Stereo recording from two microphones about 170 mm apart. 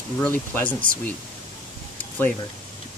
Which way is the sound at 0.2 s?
10° left (ahead or behind).